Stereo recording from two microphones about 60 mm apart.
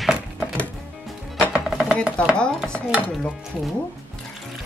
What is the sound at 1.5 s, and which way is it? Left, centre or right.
Music, centre.